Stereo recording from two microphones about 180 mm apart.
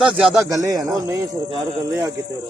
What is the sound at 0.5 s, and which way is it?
Speech, 20° right (ahead or behind).